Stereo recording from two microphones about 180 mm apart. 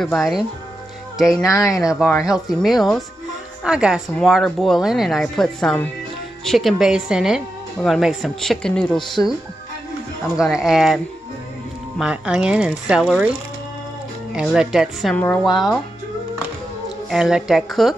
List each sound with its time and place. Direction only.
0.0 s speech: centre (ahead or behind)
1.4 s speech: 20° left (ahead or behind)
1.8 s speech: 5° right (ahead or behind)
10.3 s speech: 5° right (ahead or behind)
12.0 s speech: 5° right (ahead or behind)
14.3 s speech: centre (ahead or behind)
17.1 s speech: 5° right (ahead or behind)